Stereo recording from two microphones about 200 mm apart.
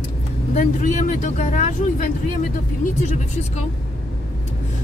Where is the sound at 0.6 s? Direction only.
35° left (ahead or behind).